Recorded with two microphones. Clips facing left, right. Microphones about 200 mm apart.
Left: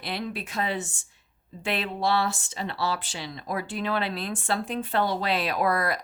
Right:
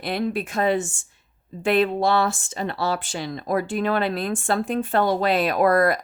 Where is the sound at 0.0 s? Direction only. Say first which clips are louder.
Right 8 dB; 50° right (ahead or behind).